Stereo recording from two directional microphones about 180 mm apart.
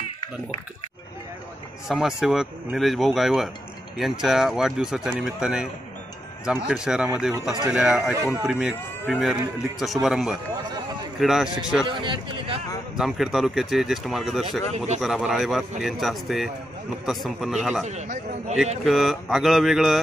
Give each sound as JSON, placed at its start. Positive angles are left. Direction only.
{"t": 1.9, "sound": "speech", "side_deg": 0}
{"t": 6.7, "sound": "speech", "side_deg": -5}
{"t": 12.0, "sound": "a man's voice", "side_deg": -25}
{"t": 12.9, "sound": "speech", "side_deg": 0}
{"t": 17.8, "sound": "a sound", "side_deg": -40}
{"t": 18.9, "sound": "speech", "side_deg": 0}